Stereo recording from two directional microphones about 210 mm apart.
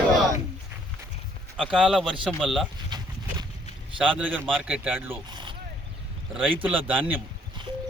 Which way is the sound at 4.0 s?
5° right (ahead or behind).